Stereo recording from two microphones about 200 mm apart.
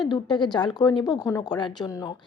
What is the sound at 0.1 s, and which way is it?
A woman's voice, 20° left (ahead or behind).